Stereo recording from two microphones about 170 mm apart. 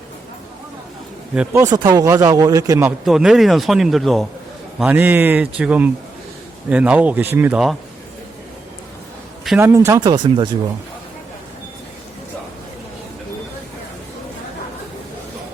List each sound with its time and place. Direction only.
1.4 s speech: 10° right (ahead or behind)
1.7 s speech: 25° right (ahead or behind)
3.0 s speech: centre (ahead or behind)
4.8 s speech: 10° right (ahead or behind)
9.6 s speech: 15° right (ahead or behind)
10.0 s speech: 30° right (ahead or behind)